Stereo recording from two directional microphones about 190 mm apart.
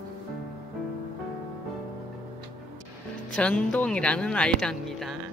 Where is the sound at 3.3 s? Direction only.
5° left (ahead or behind).